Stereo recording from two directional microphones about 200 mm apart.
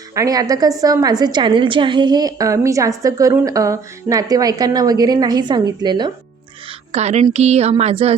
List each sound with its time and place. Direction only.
0.1 s a woman's voice: 15° right (ahead or behind)
6.9 s a woman's voice: 35° right (ahead or behind)